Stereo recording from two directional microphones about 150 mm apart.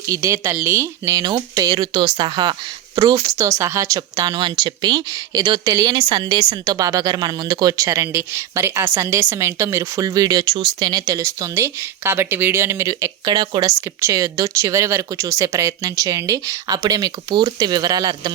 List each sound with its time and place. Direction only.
0.0 s speech: 20° right (ahead or behind)
13.7 s speech: 20° right (ahead or behind)